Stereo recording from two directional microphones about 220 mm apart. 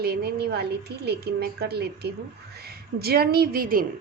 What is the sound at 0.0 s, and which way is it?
A woman's voice, 45° right (ahead or behind).